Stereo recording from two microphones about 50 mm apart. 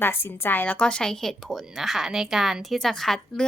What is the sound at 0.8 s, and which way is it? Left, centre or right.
Speech, centre.